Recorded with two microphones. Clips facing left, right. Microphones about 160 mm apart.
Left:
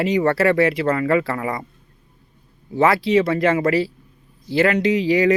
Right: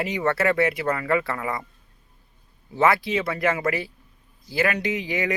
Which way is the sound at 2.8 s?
30° left (ahead or behind).